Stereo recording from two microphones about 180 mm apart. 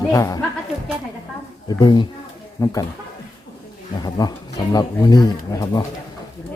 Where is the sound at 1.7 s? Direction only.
25° left (ahead or behind).